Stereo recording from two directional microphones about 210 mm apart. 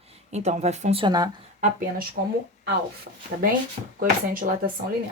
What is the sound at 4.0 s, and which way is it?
Speech, 40° right (ahead or behind).